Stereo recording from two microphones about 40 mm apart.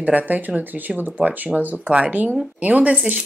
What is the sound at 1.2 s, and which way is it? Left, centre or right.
A woman's voice, right.